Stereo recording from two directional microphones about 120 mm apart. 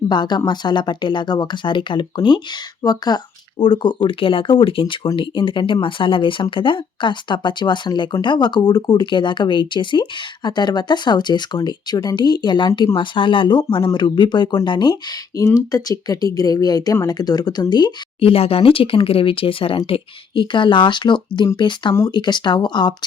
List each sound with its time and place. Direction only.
0.1 s speech: 40° left (ahead or behind)